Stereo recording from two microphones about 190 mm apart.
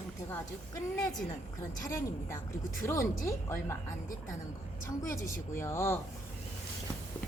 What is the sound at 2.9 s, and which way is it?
Speech, 15° left (ahead or behind).